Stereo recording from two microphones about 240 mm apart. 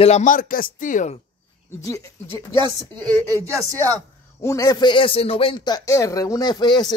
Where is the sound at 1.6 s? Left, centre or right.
Centre.